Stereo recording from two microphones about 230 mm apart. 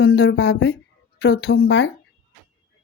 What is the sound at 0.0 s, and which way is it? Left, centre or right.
Speech, left.